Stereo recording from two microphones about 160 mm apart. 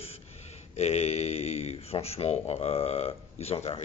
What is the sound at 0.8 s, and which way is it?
Speech, 40° left (ahead or behind).